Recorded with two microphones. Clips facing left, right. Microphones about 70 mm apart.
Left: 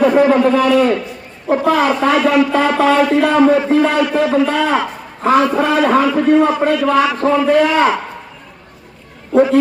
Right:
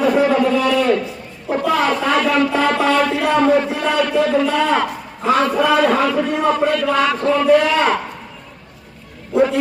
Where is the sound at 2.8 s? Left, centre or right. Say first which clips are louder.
Left 4 dB; centre.